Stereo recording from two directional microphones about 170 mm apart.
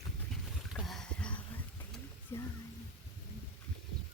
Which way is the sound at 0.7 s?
Centre (ahead or behind).